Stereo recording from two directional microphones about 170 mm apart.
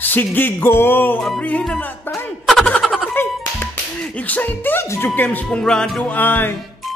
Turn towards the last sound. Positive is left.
turn(degrees=10)  # may be behind; listen again after turning